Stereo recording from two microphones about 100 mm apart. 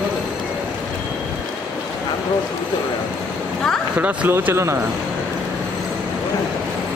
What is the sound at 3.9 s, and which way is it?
Speech, 20° right (ahead or behind).